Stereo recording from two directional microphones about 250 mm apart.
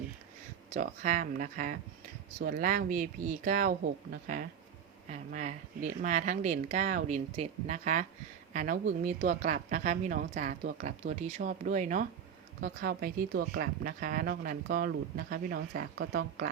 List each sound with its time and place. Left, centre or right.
0.7 s speech: right